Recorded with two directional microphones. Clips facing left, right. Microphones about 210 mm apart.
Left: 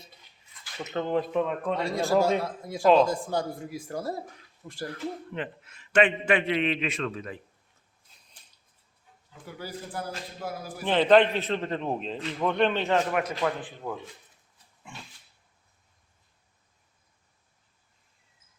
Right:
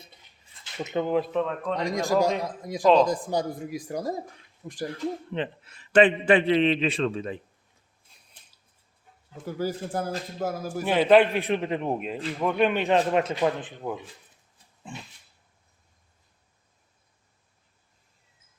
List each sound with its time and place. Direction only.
0.5 s a sound: 20° right (ahead or behind)
1.1 s speech: centre (ahead or behind)
1.7 s a man's voice: 15° right (ahead or behind)
2.8 s speech: centre (ahead or behind)
3.1 s a man's voice: 15° right (ahead or behind)
9.6 s a sound: 40° right (ahead or behind)
10.8 s a man's voice: 10° right (ahead or behind)
14.9 s a man's voice: 30° right (ahead or behind)